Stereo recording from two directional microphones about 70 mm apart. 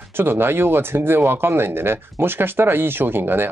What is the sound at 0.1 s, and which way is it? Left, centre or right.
Speech, right.